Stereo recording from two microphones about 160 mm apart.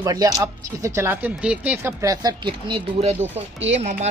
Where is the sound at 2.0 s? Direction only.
20° right (ahead or behind).